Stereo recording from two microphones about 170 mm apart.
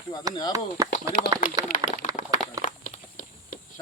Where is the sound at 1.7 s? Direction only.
50° left (ahead or behind).